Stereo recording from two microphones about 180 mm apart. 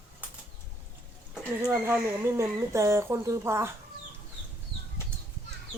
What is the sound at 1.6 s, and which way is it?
Speech, 10° right (ahead or behind).